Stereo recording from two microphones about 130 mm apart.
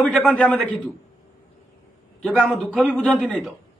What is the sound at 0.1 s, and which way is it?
Speech, 10° left (ahead or behind).